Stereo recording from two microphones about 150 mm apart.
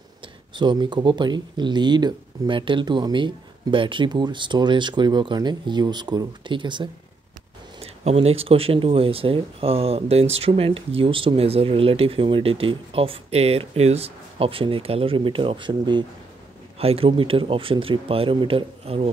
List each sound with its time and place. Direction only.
0.6 s speech: 30° right (ahead or behind)
7.8 s speech: 45° right (ahead or behind)